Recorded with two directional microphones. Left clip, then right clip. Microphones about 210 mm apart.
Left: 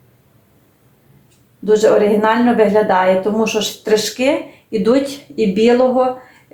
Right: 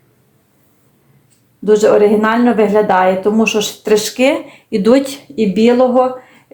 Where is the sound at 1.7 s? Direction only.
30° right (ahead or behind).